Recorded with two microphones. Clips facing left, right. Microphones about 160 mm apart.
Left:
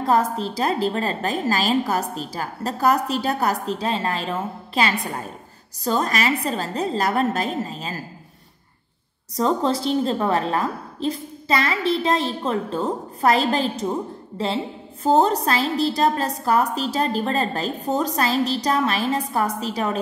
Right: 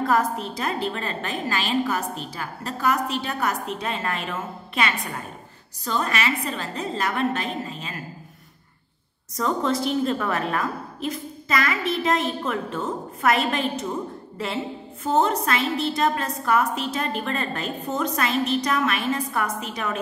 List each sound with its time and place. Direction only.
0.0 s a woman's voice: 30° left (ahead or behind)
9.4 s a woman's voice: 30° left (ahead or behind)